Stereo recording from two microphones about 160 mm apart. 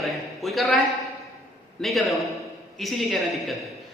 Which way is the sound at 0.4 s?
Centre (ahead or behind).